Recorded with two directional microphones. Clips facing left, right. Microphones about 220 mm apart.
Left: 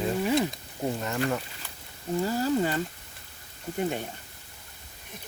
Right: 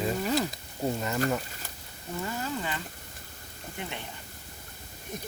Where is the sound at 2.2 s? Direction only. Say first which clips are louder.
Left 8 dB; 35° left (ahead or behind).